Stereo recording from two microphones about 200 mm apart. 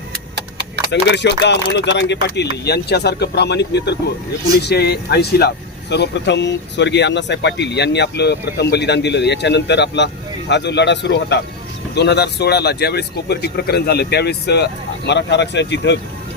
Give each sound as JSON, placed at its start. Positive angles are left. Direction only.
{"t": 0.9, "sound": "speech", "side_deg": 60}